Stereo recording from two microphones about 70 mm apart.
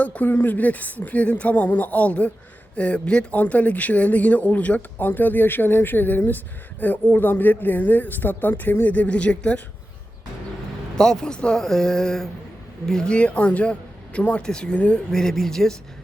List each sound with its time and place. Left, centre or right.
0.0 s speech: left
10.9 s speech: centre
15.1 s speech: centre